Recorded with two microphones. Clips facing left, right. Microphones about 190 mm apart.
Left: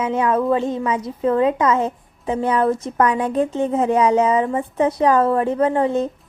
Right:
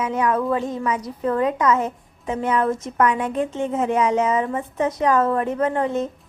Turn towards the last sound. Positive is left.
turn(degrees=30)  # may be behind; listen again after turning